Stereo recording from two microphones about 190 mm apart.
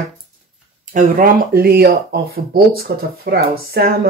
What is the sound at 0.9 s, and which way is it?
Speech, 50° right (ahead or behind).